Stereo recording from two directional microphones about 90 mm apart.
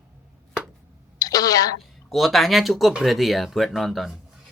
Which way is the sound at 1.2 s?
45° left (ahead or behind).